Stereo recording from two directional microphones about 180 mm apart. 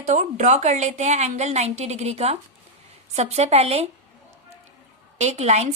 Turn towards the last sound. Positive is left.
turn(degrees=-40)  # may be behind; listen again after turning